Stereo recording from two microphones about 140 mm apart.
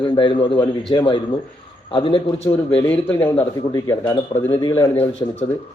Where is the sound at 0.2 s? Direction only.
35° left (ahead or behind).